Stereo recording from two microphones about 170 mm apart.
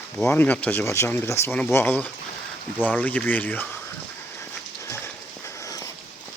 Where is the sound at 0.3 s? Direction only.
10° left (ahead or behind).